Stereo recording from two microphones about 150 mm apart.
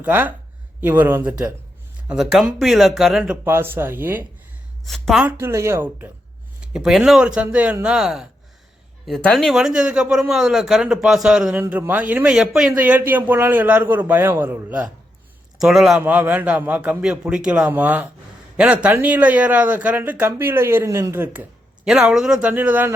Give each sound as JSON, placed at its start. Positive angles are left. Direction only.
{"t": 0.0, "sound": "speech", "side_deg": -10}
{"t": 2.0, "sound": "speech", "side_deg": 0}
{"t": 4.9, "sound": "a man's voice", "side_deg": 0}
{"t": 5.4, "sound": "speech", "side_deg": -15}
{"t": 6.7, "sound": "a man's voice", "side_deg": -5}
{"t": 21.8, "sound": "speech", "side_deg": -5}